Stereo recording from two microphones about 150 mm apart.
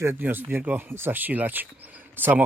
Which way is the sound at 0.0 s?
15° right (ahead or behind).